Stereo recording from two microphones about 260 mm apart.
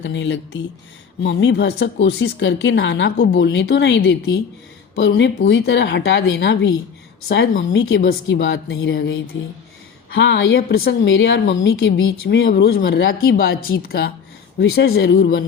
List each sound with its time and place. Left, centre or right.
0.0 s a woman's voice: left